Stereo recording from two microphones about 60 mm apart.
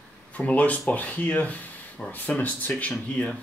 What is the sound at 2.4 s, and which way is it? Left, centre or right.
Speech, left.